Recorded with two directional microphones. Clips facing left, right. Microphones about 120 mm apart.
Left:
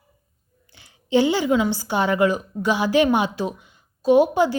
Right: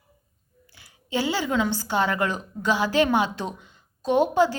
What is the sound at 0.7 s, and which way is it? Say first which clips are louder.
A woman's voice: left 9 dB; 25° left (ahead or behind).